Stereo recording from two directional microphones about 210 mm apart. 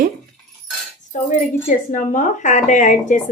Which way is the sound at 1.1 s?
35° left (ahead or behind).